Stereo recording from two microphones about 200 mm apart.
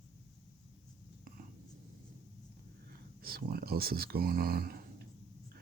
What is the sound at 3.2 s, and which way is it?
Speech, 50° right (ahead or behind).